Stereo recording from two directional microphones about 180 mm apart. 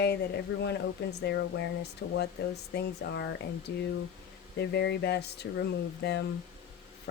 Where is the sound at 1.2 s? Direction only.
70° left (ahead or behind).